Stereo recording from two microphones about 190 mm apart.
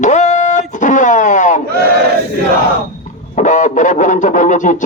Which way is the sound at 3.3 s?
40° left (ahead or behind).